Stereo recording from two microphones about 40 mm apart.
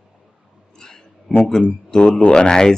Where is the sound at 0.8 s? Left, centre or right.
Centre.